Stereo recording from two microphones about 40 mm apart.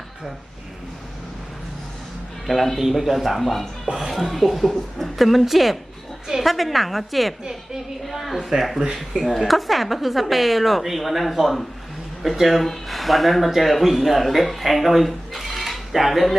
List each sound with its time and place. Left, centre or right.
2.5 s a woman's voice: centre
9.1 s speech: right
9.5 s a woman's voice: centre